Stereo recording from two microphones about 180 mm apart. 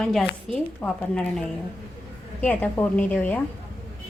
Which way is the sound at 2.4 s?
10° left (ahead or behind).